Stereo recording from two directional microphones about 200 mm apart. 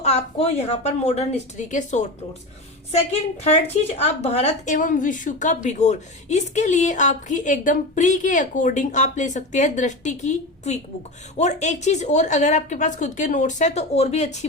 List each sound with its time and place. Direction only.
0.0 s a woman's voice: 30° left (ahead or behind)
3.1 s a woman's voice: 30° left (ahead or behind)